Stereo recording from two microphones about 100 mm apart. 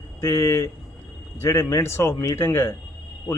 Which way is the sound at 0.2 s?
30° left (ahead or behind).